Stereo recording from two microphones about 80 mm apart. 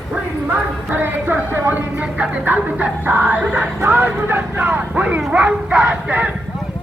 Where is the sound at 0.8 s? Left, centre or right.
Right.